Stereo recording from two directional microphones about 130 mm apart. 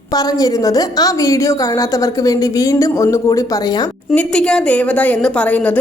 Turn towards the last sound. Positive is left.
turn(degrees=10)  # may be behind; listen again after turning